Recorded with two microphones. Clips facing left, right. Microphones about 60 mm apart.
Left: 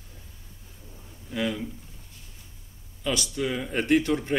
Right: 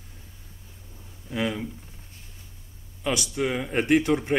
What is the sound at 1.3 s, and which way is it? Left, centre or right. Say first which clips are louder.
Speech: right 1 dB; right.